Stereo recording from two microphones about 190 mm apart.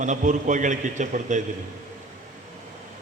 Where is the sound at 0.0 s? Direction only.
40° right (ahead or behind).